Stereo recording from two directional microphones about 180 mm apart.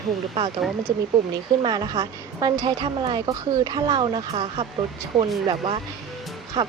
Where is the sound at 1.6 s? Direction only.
25° right (ahead or behind).